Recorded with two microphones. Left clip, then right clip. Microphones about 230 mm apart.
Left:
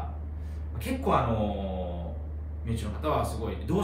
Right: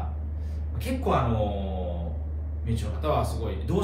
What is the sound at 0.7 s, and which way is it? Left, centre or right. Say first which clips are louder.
Speech: even; centre.